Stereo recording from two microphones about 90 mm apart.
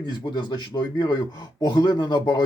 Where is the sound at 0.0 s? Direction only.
60° left (ahead or behind).